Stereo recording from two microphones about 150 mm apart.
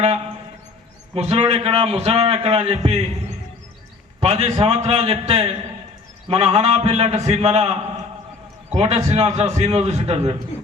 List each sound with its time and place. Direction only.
1.1 s a man's voice: 40° right (ahead or behind)
4.2 s a man's voice: 45° right (ahead or behind)